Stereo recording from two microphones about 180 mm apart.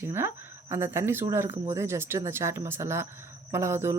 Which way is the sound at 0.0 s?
15° right (ahead or behind).